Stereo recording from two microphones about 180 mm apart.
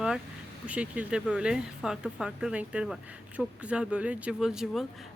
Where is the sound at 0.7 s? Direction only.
5° right (ahead or behind).